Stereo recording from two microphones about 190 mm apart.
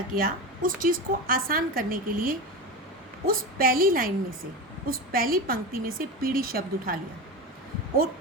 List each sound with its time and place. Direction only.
0.2 s a woman's voice: 45° right (ahead or behind)